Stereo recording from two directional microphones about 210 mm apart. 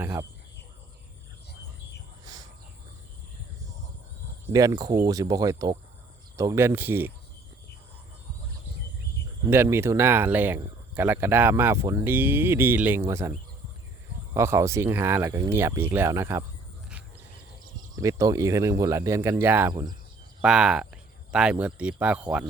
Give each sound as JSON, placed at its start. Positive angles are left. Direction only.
{"t": 0.0, "sound": "speech", "side_deg": -10}
{"t": 2.2, "sound": "a sound", "side_deg": -15}
{"t": 4.5, "sound": "speech", "side_deg": -15}
{"t": 9.5, "sound": "speech", "side_deg": -10}
{"t": 14.3, "sound": "speech", "side_deg": -15}
{"t": 17.9, "sound": "speech", "side_deg": -15}